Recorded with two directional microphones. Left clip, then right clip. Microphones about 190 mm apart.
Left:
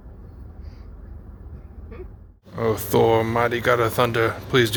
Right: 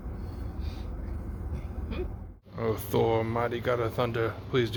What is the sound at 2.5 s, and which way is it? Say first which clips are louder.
Speech: left 8 dB; 15° left (ahead or behind).